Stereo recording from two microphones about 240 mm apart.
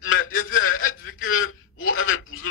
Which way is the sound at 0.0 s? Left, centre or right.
Left.